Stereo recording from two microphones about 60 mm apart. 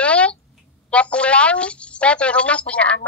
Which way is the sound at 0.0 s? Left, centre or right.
Centre.